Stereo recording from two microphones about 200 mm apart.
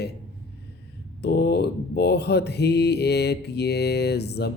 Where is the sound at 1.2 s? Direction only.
55° left (ahead or behind).